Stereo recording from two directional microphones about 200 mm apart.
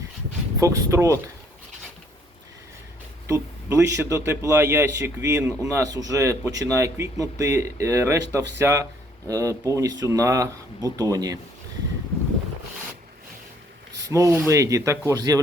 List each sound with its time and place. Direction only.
0.6 s speech: 15° right (ahead or behind)
3.2 s speech: 15° right (ahead or behind)
14.0 s speech: 15° right (ahead or behind)